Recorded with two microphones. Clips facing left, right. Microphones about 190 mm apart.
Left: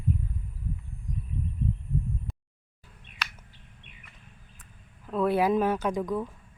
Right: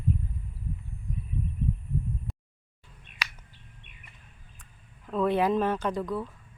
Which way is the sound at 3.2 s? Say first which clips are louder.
Even; 10° right (ahead or behind).